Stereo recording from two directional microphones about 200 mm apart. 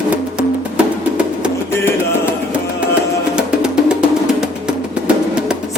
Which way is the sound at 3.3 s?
5° right (ahead or behind).